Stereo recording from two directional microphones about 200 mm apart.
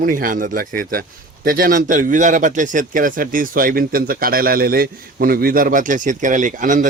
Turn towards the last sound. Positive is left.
turn(degrees=-40)  # may be behind; listen again after turning